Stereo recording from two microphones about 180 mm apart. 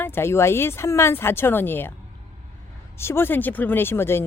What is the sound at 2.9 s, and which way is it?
Speech, 15° left (ahead or behind).